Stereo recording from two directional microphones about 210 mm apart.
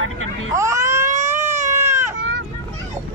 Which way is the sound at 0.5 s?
15° right (ahead or behind).